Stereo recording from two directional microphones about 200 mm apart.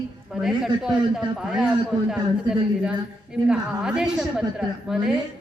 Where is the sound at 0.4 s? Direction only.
Centre (ahead or behind).